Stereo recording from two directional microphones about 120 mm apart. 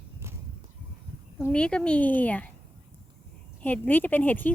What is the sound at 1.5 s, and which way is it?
Speech, 10° left (ahead or behind).